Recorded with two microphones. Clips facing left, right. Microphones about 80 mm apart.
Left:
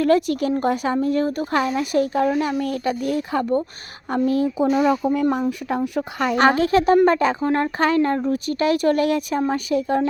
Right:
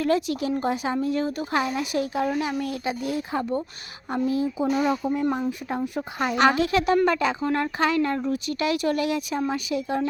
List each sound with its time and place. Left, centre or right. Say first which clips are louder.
0.0 s speech: left 5 dB; left